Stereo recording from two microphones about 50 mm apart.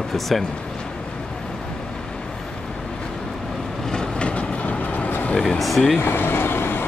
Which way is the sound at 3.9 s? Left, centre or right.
Centre.